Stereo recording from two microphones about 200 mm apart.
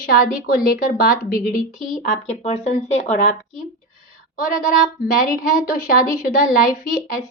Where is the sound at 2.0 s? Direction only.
35° left (ahead or behind).